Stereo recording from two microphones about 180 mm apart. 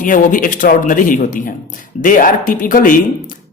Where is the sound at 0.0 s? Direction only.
50° left (ahead or behind).